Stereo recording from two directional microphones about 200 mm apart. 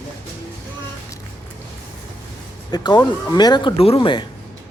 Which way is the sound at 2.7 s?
20° left (ahead or behind).